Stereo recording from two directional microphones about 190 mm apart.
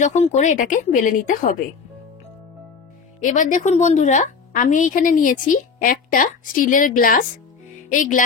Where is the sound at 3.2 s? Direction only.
40° left (ahead or behind).